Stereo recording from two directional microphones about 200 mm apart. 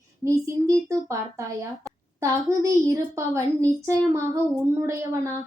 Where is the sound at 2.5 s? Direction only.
15° right (ahead or behind).